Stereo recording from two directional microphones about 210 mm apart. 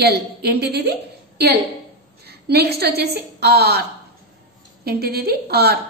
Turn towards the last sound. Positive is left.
turn(degrees=-50)  # may be behind; listen again after turning